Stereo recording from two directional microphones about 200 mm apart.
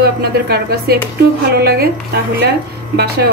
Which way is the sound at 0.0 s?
50° right (ahead or behind).